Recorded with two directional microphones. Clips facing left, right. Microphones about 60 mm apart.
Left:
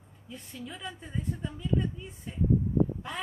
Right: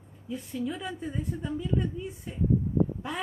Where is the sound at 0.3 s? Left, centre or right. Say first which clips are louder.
Right 9 dB; centre.